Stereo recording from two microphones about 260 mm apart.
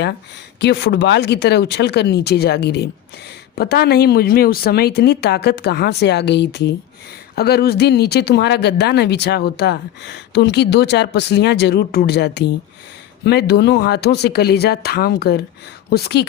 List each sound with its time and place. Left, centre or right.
0.6 s speech: left